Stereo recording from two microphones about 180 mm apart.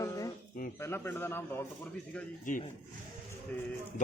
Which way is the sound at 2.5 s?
45° left (ahead or behind).